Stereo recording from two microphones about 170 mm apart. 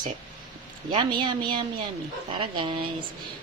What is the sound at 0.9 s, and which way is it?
A woman's voice, 30° right (ahead or behind).